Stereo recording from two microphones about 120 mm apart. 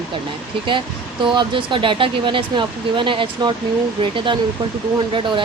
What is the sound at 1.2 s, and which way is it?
Speech, 40° right (ahead or behind).